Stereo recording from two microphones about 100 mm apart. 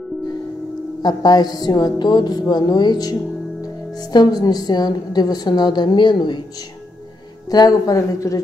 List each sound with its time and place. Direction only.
1.0 s a woman's voice: 45° left (ahead or behind)
7.5 s speech: 40° left (ahead or behind)